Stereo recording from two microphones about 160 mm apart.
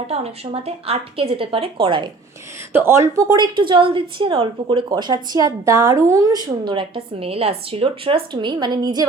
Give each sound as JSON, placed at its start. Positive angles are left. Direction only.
{"t": 0.1, "sound": "speech", "side_deg": -40}
{"t": 2.7, "sound": "speech", "side_deg": -15}
{"t": 3.3, "sound": "speech", "side_deg": -30}